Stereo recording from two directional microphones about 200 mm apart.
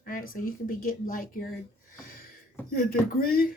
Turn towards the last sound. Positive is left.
turn(degrees=45)  # may be behind; listen again after turning